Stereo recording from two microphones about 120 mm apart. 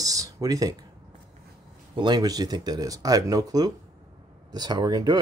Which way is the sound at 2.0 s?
35° right (ahead or behind).